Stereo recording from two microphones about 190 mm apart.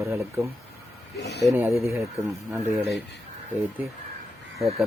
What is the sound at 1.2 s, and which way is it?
Speech, 60° left (ahead or behind).